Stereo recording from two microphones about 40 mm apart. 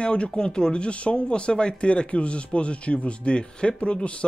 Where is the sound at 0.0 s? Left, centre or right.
Left.